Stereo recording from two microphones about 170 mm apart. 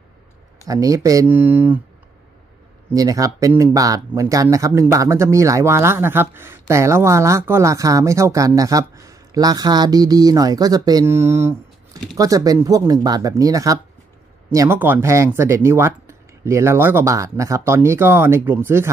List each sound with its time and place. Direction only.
0.7 s speech: 20° right (ahead or behind)
2.9 s speech: 20° right (ahead or behind)